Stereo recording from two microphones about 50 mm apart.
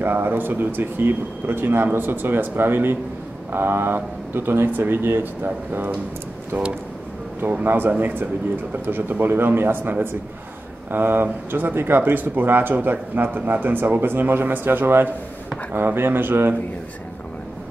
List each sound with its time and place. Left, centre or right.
0.0 s speech: right
7.6 s speech: right